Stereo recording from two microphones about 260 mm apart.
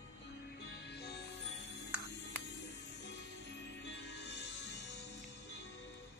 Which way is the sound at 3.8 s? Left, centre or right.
Left.